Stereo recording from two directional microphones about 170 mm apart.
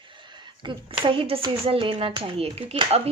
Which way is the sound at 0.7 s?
25° right (ahead or behind).